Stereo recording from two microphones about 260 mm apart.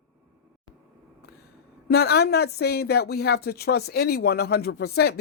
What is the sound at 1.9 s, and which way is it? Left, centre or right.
Speech, left.